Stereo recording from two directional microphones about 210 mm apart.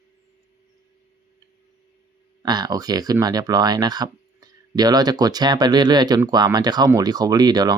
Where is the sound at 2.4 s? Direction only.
20° right (ahead or behind).